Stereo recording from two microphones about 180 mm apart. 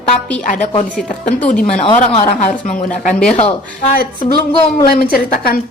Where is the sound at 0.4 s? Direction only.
45° left (ahead or behind).